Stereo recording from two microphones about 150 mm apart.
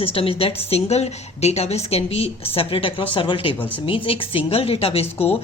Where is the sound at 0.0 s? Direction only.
40° left (ahead or behind).